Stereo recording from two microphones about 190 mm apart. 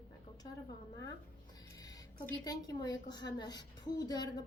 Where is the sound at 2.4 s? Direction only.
20° left (ahead or behind).